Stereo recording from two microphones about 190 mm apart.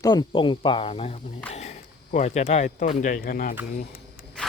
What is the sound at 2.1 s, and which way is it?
Speech, 35° left (ahead or behind).